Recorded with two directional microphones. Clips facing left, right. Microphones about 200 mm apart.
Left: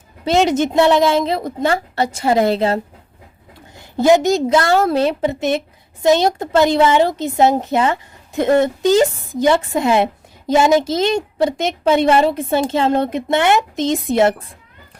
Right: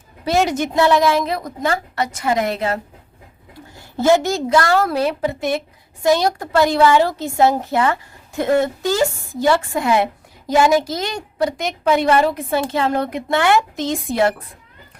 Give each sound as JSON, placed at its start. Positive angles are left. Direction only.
{"t": 0.3, "sound": "a woman's voice", "side_deg": 20}
{"t": 3.9, "sound": "a woman's voice", "side_deg": 15}